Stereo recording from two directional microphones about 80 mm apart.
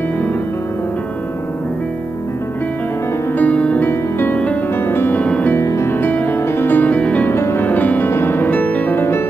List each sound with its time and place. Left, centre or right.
3.3 s music: centre
5.6 s music: left
5.9 s music: left
7.2 s music: left
7.6 s music: left